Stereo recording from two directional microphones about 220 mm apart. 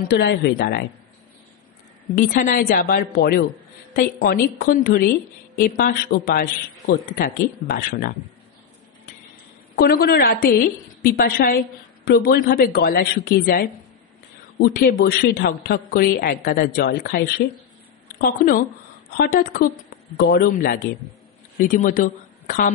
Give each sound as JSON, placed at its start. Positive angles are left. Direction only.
{"t": 0.1, "sound": "a woman's voice", "side_deg": 50}
{"t": 2.1, "sound": "a woman's voice", "side_deg": 35}
{"t": 9.8, "sound": "a woman's voice", "side_deg": 45}
{"t": 18.2, "sound": "a woman's voice", "side_deg": 40}